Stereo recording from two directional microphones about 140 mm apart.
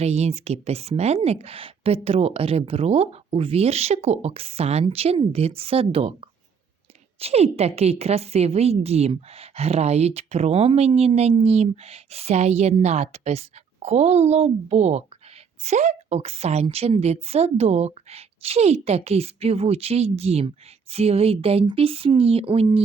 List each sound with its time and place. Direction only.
0.0 s a woman's voice: 50° right (ahead or behind)
7.2 s a woman's voice: 45° right (ahead or behind)